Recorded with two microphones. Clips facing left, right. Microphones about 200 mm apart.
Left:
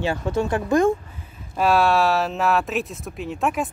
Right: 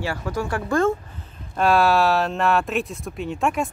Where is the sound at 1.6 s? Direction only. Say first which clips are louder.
Even; centre (ahead or behind).